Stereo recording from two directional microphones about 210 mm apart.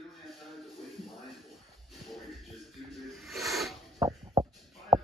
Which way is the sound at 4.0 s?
15° right (ahead or behind).